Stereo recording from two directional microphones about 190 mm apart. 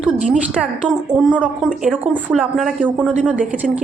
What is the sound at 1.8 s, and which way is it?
A woman's voice, 5° right (ahead or behind).